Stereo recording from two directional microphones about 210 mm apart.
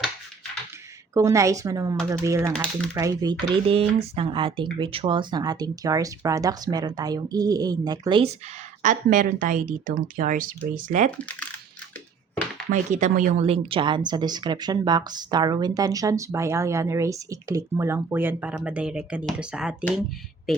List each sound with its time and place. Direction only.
1.1 s speech: 15° right (ahead or behind)
2.5 s speech: 5° left (ahead or behind)
2.9 s speech: 15° right (ahead or behind)
8.8 s speech: 40° right (ahead or behind)
11.2 s speech: 5° left (ahead or behind)
12.7 s speech: 35° right (ahead or behind); by 20.6 s centre (ahead or behind)